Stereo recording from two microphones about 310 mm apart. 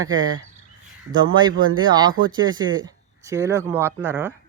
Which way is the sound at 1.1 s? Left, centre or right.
Centre.